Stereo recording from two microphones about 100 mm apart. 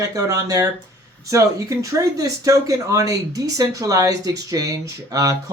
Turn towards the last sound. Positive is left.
turn(degrees=-35)  # may be behind; listen again after turning